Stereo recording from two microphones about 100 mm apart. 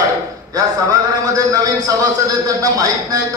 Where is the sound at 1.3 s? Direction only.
35° right (ahead or behind).